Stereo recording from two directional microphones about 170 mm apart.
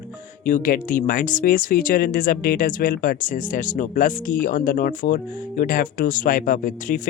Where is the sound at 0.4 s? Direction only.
55° left (ahead or behind).